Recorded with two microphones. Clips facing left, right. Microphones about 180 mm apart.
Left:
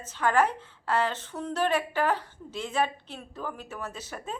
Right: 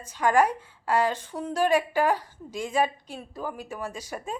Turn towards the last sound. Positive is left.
turn(degrees=-10)  # may be behind; listen again after turning